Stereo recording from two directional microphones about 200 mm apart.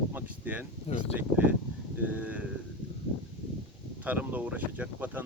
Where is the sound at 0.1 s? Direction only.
10° right (ahead or behind).